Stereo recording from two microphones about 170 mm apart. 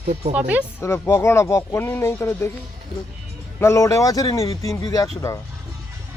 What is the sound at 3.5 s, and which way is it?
Speech, 15° left (ahead or behind).